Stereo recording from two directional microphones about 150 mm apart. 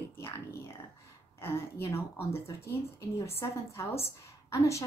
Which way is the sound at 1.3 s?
15° left (ahead or behind).